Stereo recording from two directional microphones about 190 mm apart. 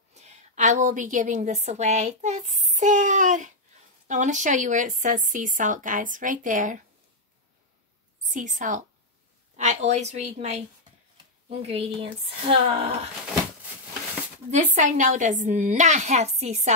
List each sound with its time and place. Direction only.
0.1 s a woman's voice: 35° right (ahead or behind)
8.2 s a woman's voice: 40° right (ahead or behind)
14.5 s a woman's voice: 40° right (ahead or behind)